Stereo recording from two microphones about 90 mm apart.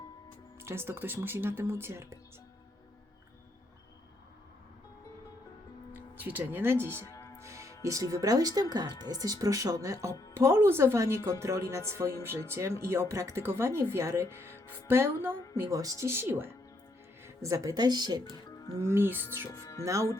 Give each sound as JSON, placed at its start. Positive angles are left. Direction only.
{"t": 0.6, "sound": "speech", "side_deg": -25}
{"t": 6.1, "sound": "speech", "side_deg": -20}
{"t": 7.1, "sound": "music", "side_deg": 35}
{"t": 7.3, "sound": "music", "side_deg": -35}
{"t": 8.1, "sound": "a woman's voice", "side_deg": -40}
{"t": 15.7, "sound": "a woman's voice", "side_deg": -40}
{"t": 17.7, "sound": "speech", "side_deg": -50}
{"t": 18.8, "sound": "speech", "side_deg": -30}
{"t": 19.5, "sound": "speech", "side_deg": 35}
{"t": 19.8, "sound": "a woman's voice", "side_deg": -35}